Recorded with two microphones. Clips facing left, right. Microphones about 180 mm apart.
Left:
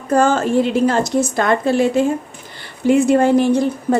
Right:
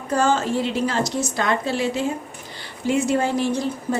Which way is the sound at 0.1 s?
50° left (ahead or behind).